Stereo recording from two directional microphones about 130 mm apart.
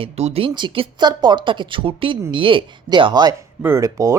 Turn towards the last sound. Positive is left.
turn(degrees=-25)  # may be behind; listen again after turning